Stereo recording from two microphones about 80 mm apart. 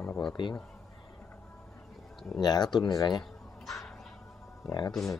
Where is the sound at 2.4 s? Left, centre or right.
Left.